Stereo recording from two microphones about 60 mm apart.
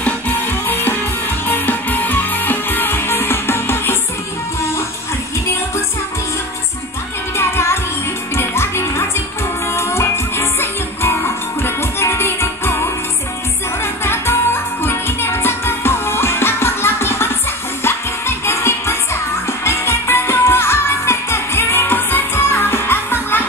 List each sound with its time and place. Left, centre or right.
0.0 s music: left
7.3 s music: left
14.0 s music: left